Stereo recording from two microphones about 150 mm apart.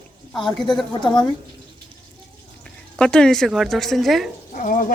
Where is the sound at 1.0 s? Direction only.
30° left (ahead or behind).